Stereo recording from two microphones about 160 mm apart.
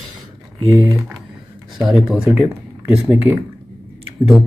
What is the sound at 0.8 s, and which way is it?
Speech, 20° right (ahead or behind).